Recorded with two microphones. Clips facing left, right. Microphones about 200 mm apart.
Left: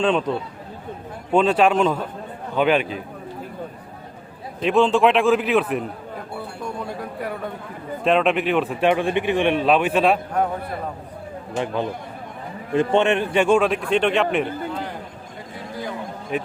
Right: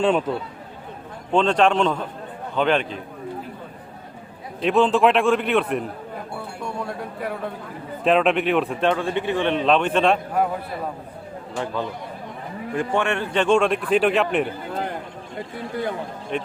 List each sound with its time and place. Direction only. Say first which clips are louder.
0.0 s speech: even; 5° right (ahead or behind)
1.3 s speech: left 1 dB; 5° left (ahead or behind)
4.6 s a man's voice: left 1 dB; centre (ahead or behind)
7.2 s a sound: right 1 dB; centre (ahead or behind)
8.0 s a man's voice: even; centre (ahead or behind)
8.9 s speech: left 3 dB; 15° left (ahead or behind)
11.5 s a man's voice: left 3 dB; 20° left (ahead or behind); by 14.4 s centre (ahead or behind)
16.3 s speech: left 1 dB; 5° left (ahead or behind)